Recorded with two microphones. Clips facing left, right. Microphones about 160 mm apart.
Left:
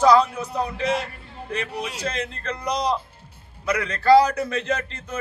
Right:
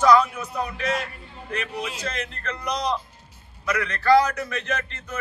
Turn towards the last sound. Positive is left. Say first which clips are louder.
# left 3 dB
turn(degrees=30)  # may be behind; listen again after turning